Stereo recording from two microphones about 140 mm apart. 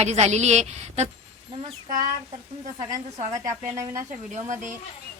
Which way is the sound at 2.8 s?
20° right (ahead or behind).